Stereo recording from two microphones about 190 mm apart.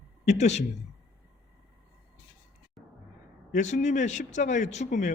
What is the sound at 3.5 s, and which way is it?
A man's voice, 40° left (ahead or behind).